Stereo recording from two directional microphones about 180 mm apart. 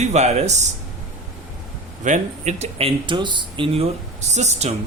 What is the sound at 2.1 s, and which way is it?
Speech, 40° right (ahead or behind).